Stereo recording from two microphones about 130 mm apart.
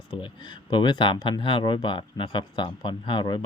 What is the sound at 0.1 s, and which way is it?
Speech, 35° left (ahead or behind).